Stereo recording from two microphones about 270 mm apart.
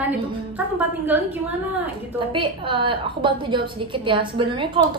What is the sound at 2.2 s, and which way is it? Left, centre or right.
A woman's voice, centre.